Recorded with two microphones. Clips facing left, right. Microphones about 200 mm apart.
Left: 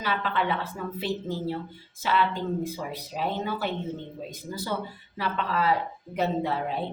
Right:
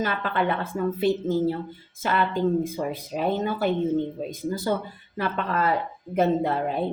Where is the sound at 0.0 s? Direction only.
50° right (ahead or behind).